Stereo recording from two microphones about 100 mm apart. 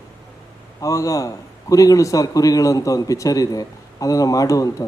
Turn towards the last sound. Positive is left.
turn(degrees=35)  # may be behind; listen again after turning